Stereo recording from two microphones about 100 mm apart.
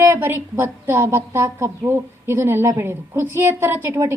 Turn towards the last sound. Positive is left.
turn(degrees=-30)  # may be behind; listen again after turning